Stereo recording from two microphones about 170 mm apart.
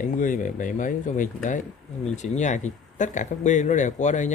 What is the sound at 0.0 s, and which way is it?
Speech, 50° left (ahead or behind).